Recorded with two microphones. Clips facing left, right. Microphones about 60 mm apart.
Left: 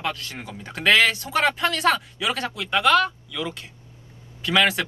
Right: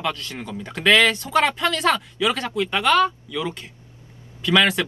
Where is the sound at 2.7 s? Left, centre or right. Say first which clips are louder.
Even; centre.